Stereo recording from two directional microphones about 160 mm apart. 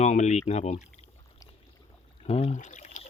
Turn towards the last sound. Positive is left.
turn(degrees=50)  # may be behind; listen again after turning